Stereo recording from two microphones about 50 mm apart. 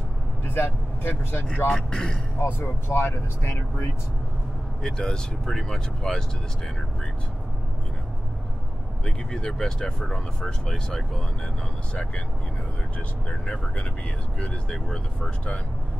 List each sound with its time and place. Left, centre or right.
0.6 s speech: left
1.7 s speech: centre
2.4 s speech: left
4.8 s speech: centre
9.0 s speech: centre
14.4 s speech: centre